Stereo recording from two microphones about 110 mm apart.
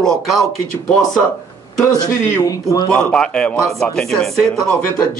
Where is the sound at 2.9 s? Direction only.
10° left (ahead or behind).